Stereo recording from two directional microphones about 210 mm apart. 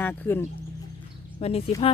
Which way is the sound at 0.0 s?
10° left (ahead or behind).